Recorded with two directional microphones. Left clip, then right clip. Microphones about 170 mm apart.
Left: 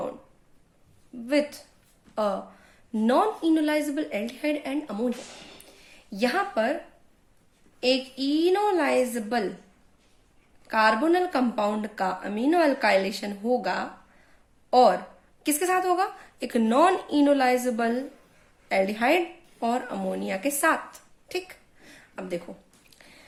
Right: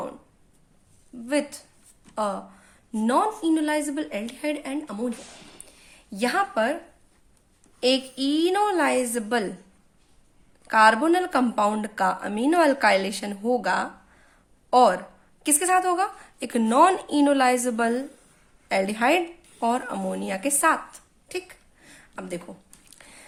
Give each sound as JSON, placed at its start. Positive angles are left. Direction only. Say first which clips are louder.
{"t": 1.3, "sound": "a woman's voice", "louder": "left 1 dB", "side_deg": -30}
{"t": 7.8, "sound": "speech", "louder": "right 2 dB", "side_deg": -50}
{"t": 10.7, "sound": "a woman's voice", "louder": "right 4 dB", "side_deg": -45}
{"t": 18.7, "sound": "a sound", "louder": "right 1 dB", "side_deg": -40}